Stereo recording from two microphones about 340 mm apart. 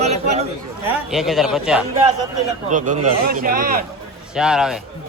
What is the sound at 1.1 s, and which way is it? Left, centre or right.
Speech, centre.